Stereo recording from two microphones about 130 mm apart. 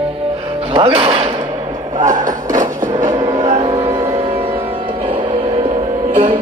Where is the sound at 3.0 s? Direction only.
30° right (ahead or behind).